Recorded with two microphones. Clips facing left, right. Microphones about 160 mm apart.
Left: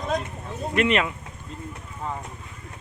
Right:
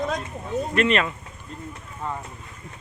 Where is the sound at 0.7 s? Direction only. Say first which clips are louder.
Even; 15° left (ahead or behind).